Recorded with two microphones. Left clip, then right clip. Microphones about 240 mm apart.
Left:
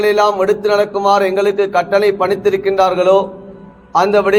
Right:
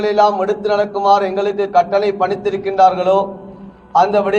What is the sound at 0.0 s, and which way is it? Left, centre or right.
A man's voice, left.